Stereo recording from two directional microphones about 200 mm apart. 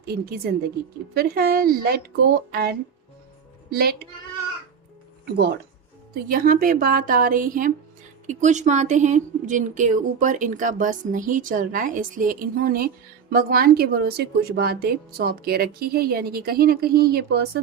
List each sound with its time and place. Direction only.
0.0 s speech: 50° right (ahead or behind)
5.2 s a woman's voice: 55° right (ahead or behind)